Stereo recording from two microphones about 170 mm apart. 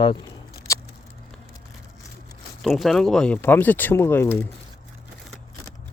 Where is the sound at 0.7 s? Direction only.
20° left (ahead or behind).